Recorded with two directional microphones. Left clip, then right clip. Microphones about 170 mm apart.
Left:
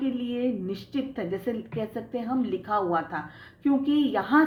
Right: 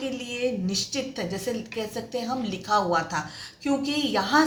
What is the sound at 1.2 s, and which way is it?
A woman's voice, 45° left (ahead or behind).